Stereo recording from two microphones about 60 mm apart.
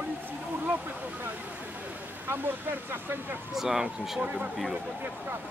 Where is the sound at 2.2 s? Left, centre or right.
Right.